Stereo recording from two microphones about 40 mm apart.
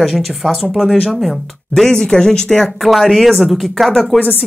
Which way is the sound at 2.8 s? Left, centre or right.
Centre.